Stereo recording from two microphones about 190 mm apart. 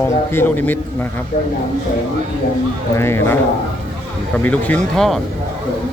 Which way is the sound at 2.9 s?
10° left (ahead or behind).